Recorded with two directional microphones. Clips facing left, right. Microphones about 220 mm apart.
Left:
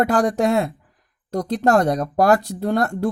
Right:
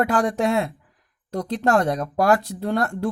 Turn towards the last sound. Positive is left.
turn(degrees=40)  # may be behind; listen again after turning